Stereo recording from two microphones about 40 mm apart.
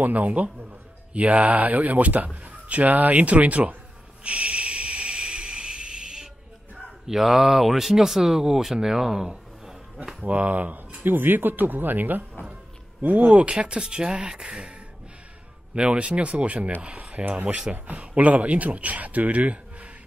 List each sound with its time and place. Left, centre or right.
0.0 s a man's voice: right
4.2 s a sound: right; by 6.3 s centre
7.1 s speech: centre
10.2 s a man's voice: right
11.1 s a man's voice: right
13.3 s a man's voice: right